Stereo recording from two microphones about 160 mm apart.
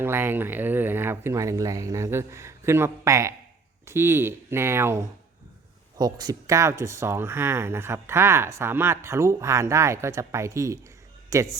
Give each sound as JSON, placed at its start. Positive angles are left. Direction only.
{"t": 0.0, "sound": "speech", "side_deg": -15}
{"t": 6.0, "sound": "a man's voice", "side_deg": -25}